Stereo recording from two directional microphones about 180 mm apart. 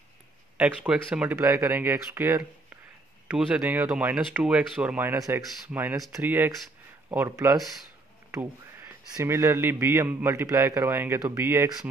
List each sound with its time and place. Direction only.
0.6 s a man's voice: 5° right (ahead or behind)
9.1 s a man's voice: 15° right (ahead or behind)